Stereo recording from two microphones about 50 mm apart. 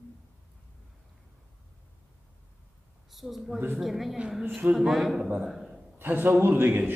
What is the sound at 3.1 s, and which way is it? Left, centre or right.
A man's voice, centre.